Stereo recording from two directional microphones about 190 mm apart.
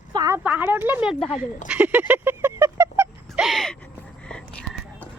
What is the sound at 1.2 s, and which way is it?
Speech, centre (ahead or behind).